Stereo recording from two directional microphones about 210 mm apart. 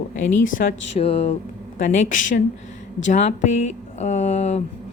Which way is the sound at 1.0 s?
25° left (ahead or behind).